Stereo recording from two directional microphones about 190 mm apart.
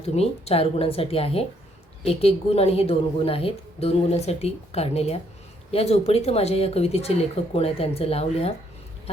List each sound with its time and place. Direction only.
0.0 s a woman's voice: 35° left (ahead or behind)